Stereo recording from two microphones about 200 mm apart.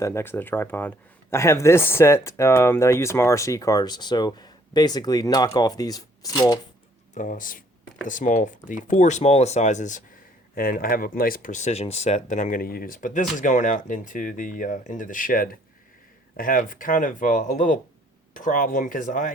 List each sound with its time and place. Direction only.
0.0 s speech: 15° left (ahead or behind)
7.1 s speech: 40° left (ahead or behind)